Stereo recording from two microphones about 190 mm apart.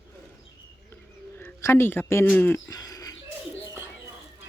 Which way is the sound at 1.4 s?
15° left (ahead or behind).